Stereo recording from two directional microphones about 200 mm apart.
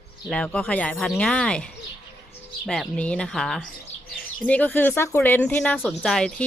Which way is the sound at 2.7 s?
5° left (ahead or behind).